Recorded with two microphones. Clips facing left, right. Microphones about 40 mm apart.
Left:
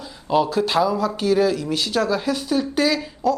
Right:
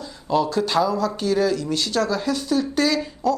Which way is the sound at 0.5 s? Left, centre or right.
Centre.